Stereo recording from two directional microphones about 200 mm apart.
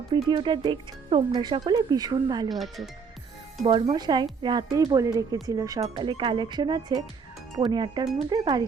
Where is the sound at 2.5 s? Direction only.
Centre (ahead or behind).